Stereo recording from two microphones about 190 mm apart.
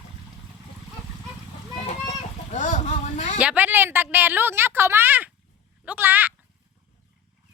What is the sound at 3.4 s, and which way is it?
A woman's voice, 10° right (ahead or behind).